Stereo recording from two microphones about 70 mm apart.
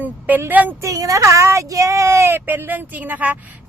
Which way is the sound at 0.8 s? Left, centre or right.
Right.